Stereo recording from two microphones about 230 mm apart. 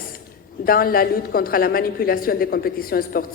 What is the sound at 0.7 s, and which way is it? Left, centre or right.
A woman's voice, left.